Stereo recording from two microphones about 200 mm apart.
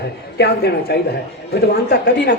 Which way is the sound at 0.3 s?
55° left (ahead or behind).